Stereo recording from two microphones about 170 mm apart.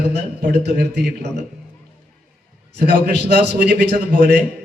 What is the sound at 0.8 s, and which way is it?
Speech, 80° right.